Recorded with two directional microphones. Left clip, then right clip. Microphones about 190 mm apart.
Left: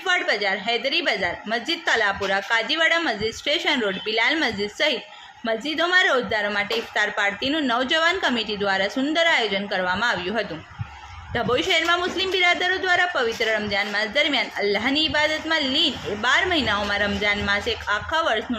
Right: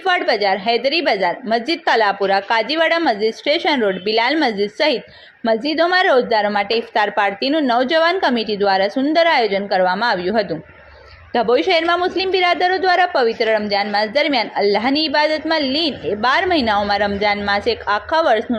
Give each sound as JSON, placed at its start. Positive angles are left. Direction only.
{"t": 0.0, "sound": "a woman's voice", "side_deg": -30}